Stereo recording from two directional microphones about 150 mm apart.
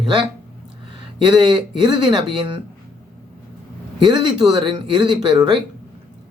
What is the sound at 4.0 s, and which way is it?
Speech, 30° right (ahead or behind).